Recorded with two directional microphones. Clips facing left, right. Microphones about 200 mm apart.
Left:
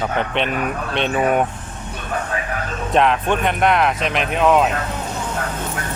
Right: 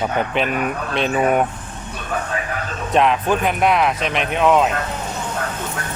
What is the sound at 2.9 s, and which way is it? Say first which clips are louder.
Speech: even; centre (ahead or behind).